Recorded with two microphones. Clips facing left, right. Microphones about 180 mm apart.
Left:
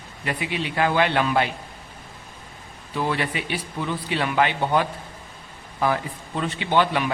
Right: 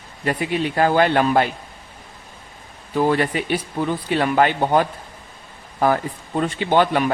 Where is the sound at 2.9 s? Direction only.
45° right (ahead or behind).